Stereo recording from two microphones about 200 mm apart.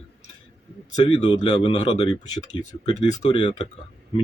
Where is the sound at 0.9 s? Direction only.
25° left (ahead or behind).